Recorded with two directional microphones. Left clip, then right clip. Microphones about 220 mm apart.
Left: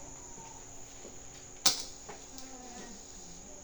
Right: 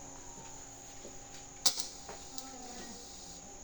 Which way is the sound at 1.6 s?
30° right (ahead or behind).